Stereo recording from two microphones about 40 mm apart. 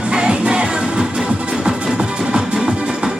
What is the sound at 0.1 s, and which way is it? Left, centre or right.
Music, right.